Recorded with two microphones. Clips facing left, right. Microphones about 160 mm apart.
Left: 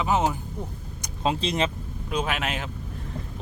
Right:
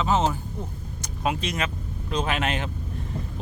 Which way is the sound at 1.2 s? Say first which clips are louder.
Left 2 dB; 30° left (ahead or behind).